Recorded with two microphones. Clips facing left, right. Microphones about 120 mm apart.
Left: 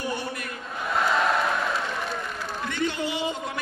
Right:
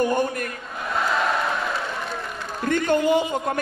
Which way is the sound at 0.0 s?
50° right (ahead or behind).